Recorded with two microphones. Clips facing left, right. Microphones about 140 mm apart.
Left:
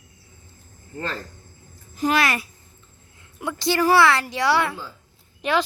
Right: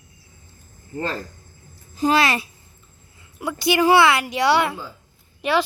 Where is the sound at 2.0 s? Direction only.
30° right (ahead or behind).